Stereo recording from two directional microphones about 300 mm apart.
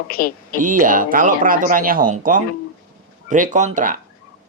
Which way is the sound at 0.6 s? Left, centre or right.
Right.